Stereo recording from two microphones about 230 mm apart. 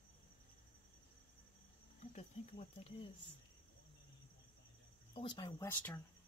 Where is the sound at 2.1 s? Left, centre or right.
Left.